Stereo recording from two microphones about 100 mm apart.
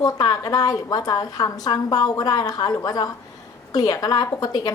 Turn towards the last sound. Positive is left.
turn(degrees=40)  # may be behind; listen again after turning